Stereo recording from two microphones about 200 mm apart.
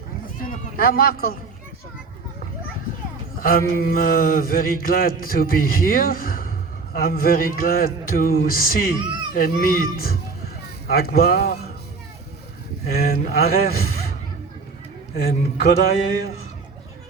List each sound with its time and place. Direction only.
0.4 s a sound: 50° left (ahead or behind)
3.3 s mantra: 45° left (ahead or behind)
12.9 s mantra: 50° left (ahead or behind)
15.1 s mantra: 50° left (ahead or behind)